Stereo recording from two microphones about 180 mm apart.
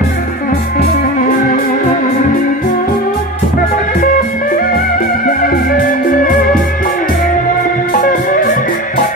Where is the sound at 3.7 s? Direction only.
50° left (ahead or behind).